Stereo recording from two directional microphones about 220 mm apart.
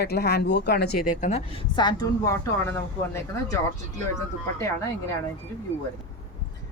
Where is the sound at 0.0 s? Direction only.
45° left (ahead or behind).